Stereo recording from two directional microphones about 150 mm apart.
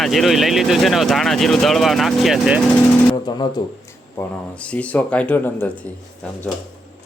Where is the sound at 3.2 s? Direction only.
30° left (ahead or behind).